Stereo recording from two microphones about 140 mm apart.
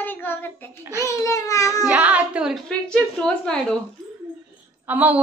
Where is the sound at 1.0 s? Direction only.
20° left (ahead or behind).